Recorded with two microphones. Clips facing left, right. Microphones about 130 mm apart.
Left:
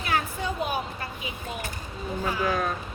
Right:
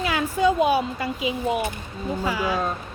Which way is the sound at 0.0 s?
90° right.